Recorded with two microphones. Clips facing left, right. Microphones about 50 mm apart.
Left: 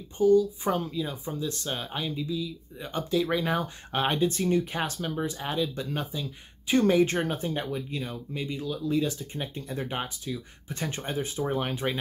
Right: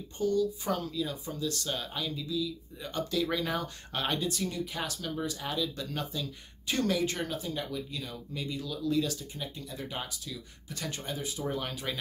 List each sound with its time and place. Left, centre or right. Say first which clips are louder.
0.2 s speech: left 8 dB; centre